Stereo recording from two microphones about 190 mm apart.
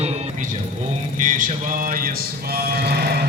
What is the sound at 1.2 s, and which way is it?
Music, 45° right (ahead or behind).